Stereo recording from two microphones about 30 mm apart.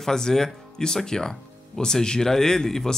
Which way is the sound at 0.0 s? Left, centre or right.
Centre.